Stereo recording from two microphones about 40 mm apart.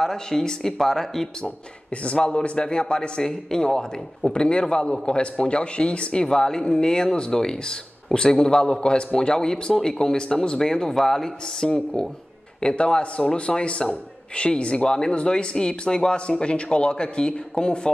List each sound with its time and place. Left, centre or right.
0.0 s speech: centre
2.0 s a man's voice: left
6.2 s a man's voice: centre
12.5 s a man's voice: left